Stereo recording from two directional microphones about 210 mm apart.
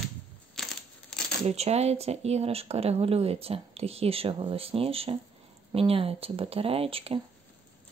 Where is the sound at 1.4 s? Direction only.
30° right (ahead or behind).